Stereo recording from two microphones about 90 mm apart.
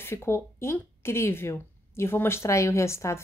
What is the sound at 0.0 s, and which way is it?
Speech, 25° left (ahead or behind).